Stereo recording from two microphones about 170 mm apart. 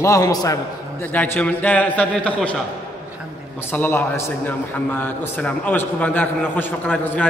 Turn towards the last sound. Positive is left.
turn(degrees=10)  # may be behind; listen again after turning